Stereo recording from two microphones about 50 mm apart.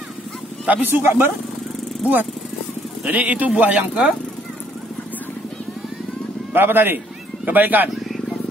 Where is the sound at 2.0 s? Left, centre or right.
Right.